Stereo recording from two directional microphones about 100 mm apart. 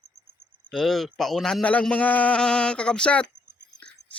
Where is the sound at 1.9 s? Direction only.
15° left (ahead or behind).